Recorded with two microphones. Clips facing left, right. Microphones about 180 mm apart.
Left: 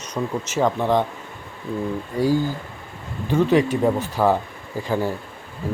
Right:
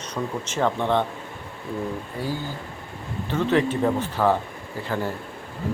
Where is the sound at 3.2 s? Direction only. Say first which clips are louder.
Left 4 dB; 10° left (ahead or behind).